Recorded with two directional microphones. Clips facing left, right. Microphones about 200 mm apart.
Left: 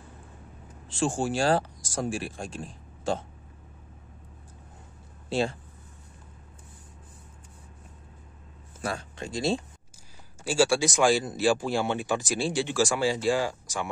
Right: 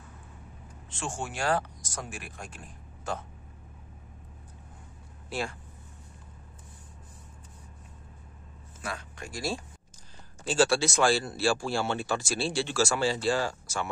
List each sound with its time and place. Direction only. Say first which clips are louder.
0.8 s speech: left 9 dB; 30° left (ahead or behind)
5.3 s speech: left 7 dB; 25° left (ahead or behind)
8.8 s speech: left 5 dB; 30° left (ahead or behind)
10.4 s speech: left 1 dB; 10° left (ahead or behind)